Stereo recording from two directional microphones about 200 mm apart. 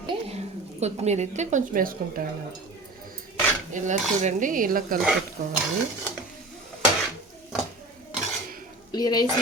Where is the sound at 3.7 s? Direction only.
40° right (ahead or behind).